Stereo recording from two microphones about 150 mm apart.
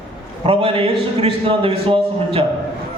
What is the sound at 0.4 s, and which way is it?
A man's voice, 40° right (ahead or behind).